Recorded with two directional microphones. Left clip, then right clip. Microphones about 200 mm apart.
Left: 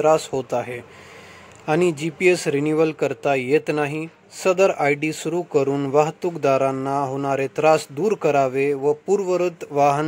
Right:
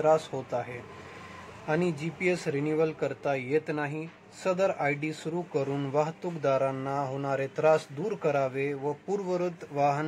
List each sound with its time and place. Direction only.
0.0 s speech: 45° left (ahead or behind)